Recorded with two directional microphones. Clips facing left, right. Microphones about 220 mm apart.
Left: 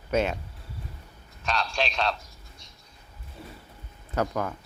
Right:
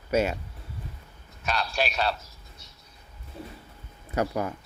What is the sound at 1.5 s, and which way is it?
Speech, 5° right (ahead or behind).